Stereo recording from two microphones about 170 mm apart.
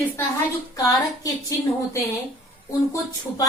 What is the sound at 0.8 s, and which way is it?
A woman's voice, 20° left (ahead or behind).